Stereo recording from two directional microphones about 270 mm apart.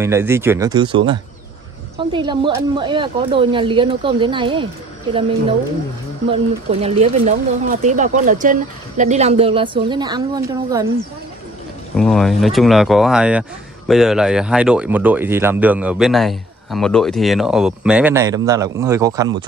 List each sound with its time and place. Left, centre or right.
0.0 s speech: centre
6.3 s speech: right
12.0 s speech: centre